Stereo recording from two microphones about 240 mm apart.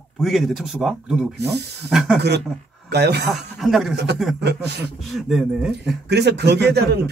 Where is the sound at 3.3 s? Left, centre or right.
Centre.